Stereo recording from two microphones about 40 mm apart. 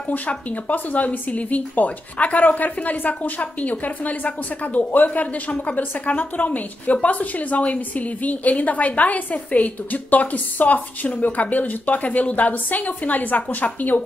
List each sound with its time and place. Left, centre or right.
0.3 s a woman's voice: left